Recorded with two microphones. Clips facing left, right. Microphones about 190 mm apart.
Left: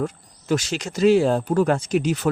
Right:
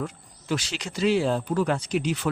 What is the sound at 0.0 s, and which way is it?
Speech, 45° left (ahead or behind).